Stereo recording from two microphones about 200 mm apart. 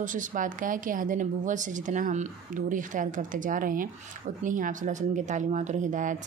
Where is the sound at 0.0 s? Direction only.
40° right (ahead or behind).